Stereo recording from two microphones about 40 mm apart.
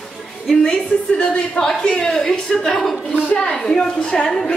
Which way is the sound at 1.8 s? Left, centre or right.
Centre.